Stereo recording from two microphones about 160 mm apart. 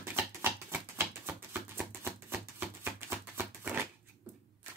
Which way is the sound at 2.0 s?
10° right (ahead or behind).